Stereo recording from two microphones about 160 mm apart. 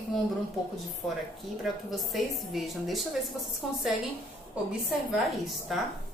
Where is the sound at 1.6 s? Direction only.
Centre (ahead or behind).